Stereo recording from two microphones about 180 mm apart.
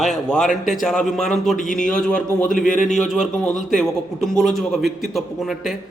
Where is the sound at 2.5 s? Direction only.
50° left (ahead or behind).